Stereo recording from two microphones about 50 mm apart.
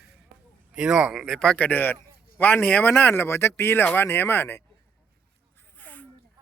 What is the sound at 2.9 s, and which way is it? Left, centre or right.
Speech, left.